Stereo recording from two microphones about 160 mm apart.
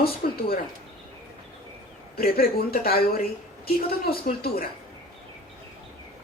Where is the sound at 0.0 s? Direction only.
70° left (ahead or behind).